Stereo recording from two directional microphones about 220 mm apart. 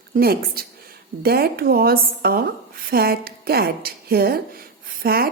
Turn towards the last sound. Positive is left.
turn(degrees=-45)  # may be behind; listen again after turning